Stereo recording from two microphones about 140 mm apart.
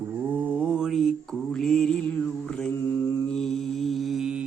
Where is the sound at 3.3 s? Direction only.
Centre (ahead or behind).